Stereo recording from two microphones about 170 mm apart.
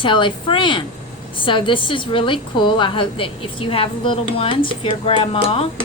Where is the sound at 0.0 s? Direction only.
30° left (ahead or behind).